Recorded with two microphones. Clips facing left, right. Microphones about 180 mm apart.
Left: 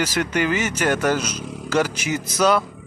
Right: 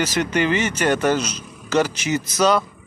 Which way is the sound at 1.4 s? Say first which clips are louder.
Left 8 dB; 90° left.